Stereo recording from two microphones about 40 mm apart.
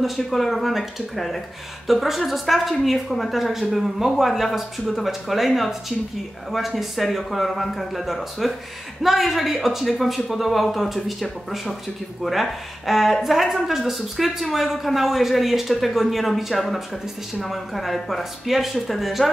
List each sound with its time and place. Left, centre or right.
0.0 s speech: centre